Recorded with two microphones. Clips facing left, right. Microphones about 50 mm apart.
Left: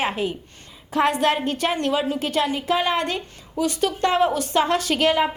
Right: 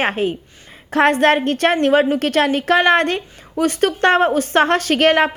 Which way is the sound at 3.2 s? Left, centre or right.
Right.